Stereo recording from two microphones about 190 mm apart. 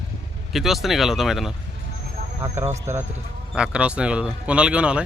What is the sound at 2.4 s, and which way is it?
Speech, 15° right (ahead or behind).